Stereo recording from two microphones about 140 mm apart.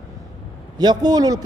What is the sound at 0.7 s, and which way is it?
Speech, 30° right (ahead or behind).